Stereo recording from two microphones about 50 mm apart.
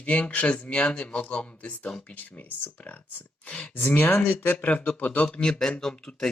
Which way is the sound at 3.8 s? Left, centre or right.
Left.